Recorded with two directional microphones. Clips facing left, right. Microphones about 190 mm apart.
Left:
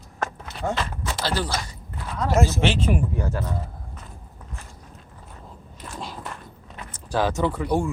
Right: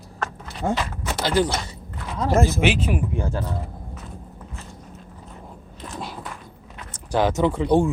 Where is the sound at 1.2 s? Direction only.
15° right (ahead or behind).